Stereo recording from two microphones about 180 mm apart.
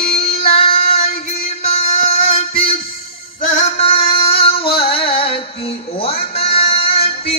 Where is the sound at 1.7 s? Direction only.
35° left (ahead or behind).